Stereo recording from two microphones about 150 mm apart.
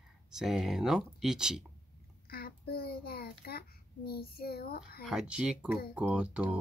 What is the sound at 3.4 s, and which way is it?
A child's voice, 90° left.